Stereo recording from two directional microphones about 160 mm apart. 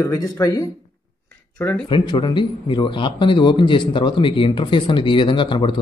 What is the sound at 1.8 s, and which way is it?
Speech, 30° left (ahead or behind).